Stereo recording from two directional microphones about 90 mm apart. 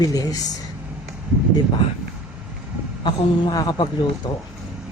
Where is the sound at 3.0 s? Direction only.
60° left (ahead or behind).